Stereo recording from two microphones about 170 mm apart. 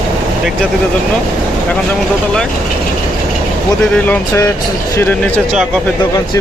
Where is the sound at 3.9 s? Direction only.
15° left (ahead or behind).